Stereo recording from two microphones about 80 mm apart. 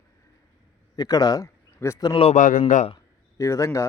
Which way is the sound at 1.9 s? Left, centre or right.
Left.